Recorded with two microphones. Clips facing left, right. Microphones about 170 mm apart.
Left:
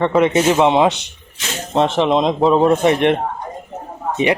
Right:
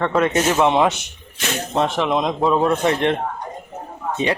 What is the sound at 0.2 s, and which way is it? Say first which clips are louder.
Speech: left 3 dB; 15° left (ahead or behind).